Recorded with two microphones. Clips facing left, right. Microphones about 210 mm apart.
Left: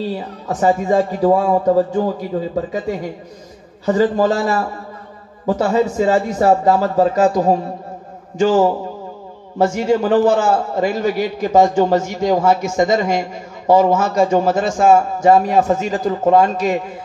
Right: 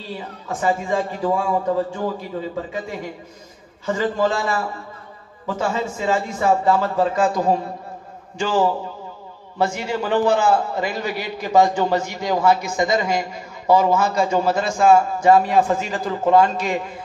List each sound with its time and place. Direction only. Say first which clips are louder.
0.5 s a man's voice: left 6 dB; 40° left (ahead or behind)